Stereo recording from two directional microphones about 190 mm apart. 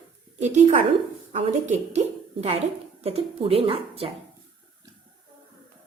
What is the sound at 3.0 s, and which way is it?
Speech, 30° right (ahead or behind).